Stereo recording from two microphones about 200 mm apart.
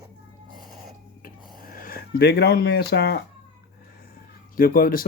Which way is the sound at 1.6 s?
45° left (ahead or behind).